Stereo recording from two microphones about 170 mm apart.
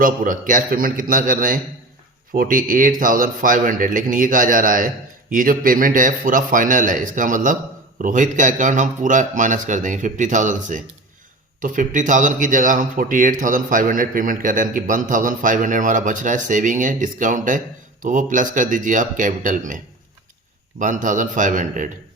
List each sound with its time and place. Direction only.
0.0 s a man's voice: 55° right (ahead or behind)